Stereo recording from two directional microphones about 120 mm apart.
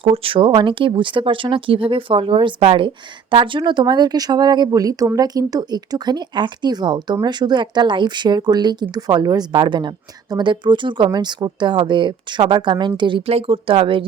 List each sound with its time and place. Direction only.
0.0 s a woman's voice: 50° right (ahead or behind)